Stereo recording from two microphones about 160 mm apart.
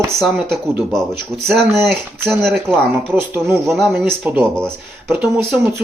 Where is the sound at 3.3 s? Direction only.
15° right (ahead or behind).